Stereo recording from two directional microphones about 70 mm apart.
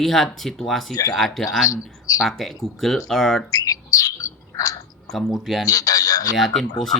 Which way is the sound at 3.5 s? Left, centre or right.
Left.